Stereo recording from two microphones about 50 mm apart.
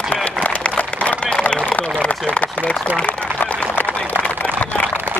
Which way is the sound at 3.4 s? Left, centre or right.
Left.